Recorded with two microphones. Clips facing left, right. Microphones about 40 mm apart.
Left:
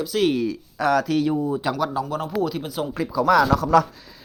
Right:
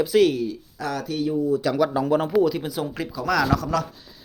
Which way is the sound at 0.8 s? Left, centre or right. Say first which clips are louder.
Left 9 dB; left.